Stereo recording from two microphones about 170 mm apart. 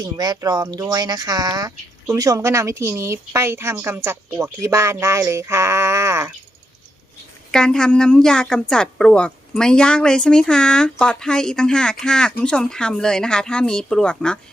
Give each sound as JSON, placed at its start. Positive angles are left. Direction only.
{"t": 0.0, "sound": "a woman's voice", "side_deg": -25}
{"t": 7.5, "sound": "speech", "side_deg": 5}